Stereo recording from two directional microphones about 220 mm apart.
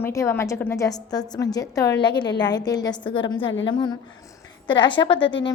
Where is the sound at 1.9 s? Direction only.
50° left (ahead or behind).